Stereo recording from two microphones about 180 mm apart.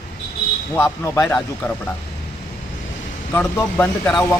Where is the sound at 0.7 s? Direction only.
15° left (ahead or behind).